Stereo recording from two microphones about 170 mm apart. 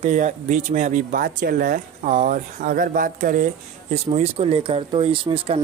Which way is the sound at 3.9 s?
35° right (ahead or behind).